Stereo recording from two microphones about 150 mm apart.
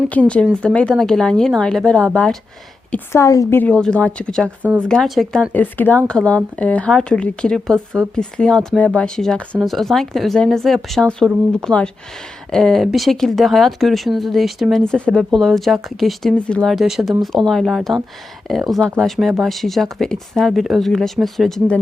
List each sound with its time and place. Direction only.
0.1 s speech: 10° left (ahead or behind)
3.1 s a woman's voice: 20° left (ahead or behind)
3.6 s speech: 5° left (ahead or behind)
4.6 s speech: 10° right (ahead or behind)
4.9 s speech: centre (ahead or behind)